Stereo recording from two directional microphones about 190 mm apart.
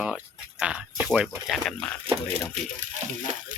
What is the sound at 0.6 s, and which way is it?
Speech, 5° right (ahead or behind).